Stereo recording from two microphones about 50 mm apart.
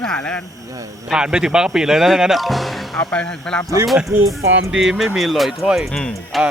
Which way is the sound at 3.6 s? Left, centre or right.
Centre.